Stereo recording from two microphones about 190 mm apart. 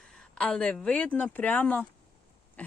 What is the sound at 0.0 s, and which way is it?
Speech, 5° left (ahead or behind).